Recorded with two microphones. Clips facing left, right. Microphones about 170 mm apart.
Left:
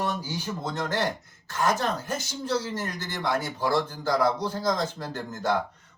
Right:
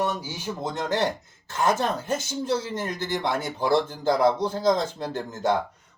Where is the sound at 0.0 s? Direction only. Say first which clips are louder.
Right 2 dB; 15° right (ahead or behind).